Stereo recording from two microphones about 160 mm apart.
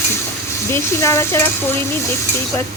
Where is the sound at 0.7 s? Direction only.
15° left (ahead or behind).